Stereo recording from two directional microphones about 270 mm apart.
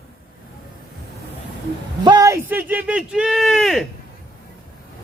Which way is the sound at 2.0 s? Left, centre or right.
Centre.